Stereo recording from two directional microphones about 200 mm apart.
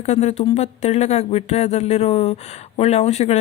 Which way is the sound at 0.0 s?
35° left (ahead or behind).